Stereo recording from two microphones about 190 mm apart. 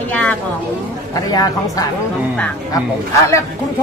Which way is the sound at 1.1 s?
20° left (ahead or behind).